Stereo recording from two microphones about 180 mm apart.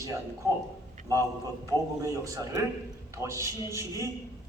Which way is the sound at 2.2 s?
20° right (ahead or behind).